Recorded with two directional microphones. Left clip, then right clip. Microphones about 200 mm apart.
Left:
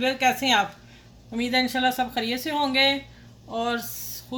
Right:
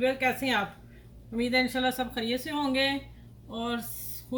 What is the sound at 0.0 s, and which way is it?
Speech, 35° left (ahead or behind).